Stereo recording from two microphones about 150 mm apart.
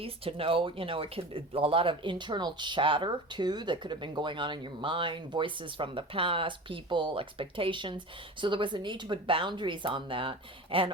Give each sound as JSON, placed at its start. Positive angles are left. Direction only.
{"t": 0.0, "sound": "speech", "side_deg": -40}